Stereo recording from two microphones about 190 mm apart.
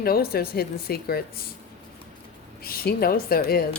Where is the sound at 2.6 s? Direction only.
55° left (ahead or behind).